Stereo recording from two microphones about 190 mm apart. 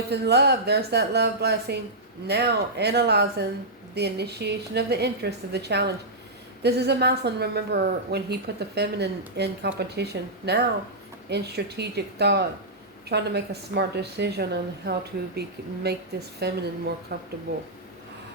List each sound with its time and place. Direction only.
0.1 s a woman's voice: 60° right (ahead or behind)